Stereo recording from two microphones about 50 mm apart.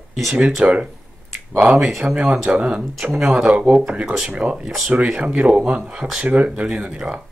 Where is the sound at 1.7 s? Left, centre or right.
Centre; by 4.5 s right.